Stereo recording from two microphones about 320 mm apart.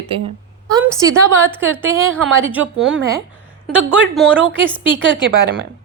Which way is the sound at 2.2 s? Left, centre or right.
Right.